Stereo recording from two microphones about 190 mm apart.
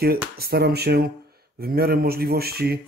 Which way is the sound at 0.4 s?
55° right (ahead or behind).